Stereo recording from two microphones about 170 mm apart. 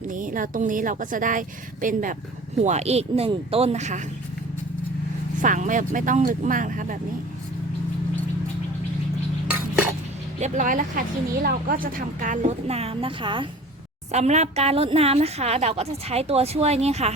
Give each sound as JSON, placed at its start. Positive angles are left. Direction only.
{"t": 0.1, "sound": "a woman's voice", "side_deg": -50}
{"t": 5.4, "sound": "a woman's voice", "side_deg": -50}
{"t": 10.4, "sound": "a woman's voice", "side_deg": -45}
{"t": 14.1, "sound": "speech", "side_deg": -40}